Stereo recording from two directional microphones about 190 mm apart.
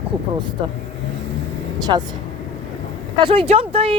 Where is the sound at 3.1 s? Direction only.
25° right (ahead or behind).